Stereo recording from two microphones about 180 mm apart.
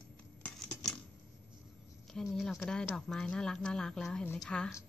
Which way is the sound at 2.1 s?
Centre (ahead or behind).